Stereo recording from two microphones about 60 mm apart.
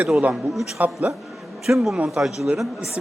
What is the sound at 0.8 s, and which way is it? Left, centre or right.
Speech, right.